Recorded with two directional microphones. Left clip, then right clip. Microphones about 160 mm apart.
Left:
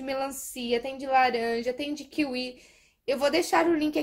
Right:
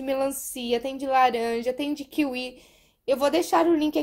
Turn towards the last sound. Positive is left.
turn(degrees=-25)  # may be behind; listen again after turning